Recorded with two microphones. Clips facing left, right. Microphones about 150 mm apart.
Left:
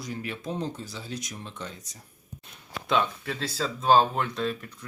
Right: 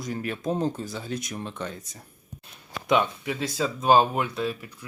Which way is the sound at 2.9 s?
15° right (ahead or behind).